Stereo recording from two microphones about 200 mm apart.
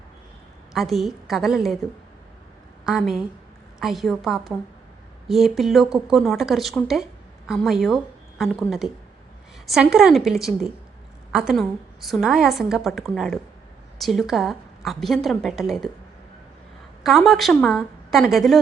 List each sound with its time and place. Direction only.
0.7 s a woman's voice: centre (ahead or behind)
2.8 s a woman's voice: centre (ahead or behind)
17.0 s a woman's voice: centre (ahead or behind)